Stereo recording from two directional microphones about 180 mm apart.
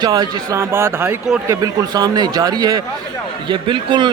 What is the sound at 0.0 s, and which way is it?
Speech, 20° right (ahead or behind).